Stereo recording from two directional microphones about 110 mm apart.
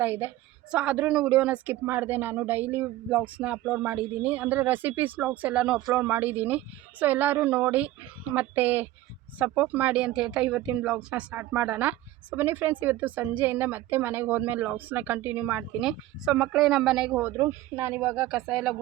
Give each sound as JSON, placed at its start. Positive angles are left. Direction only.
{"t": 0.0, "sound": "speech", "side_deg": -20}
{"t": 5.9, "sound": "speech", "side_deg": -20}
{"t": 18.3, "sound": "speech", "side_deg": -5}